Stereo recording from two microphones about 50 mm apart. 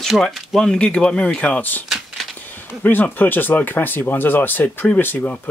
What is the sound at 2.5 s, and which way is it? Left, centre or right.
Speech, left.